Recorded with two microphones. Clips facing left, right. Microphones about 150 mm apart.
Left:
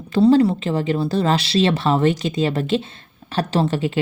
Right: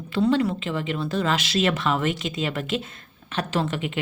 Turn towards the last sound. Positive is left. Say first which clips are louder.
# left 6 dB
turn(degrees=35)  # may be behind; listen again after turning